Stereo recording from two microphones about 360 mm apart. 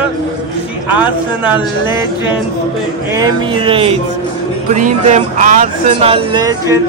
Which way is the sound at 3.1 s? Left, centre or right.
Centre.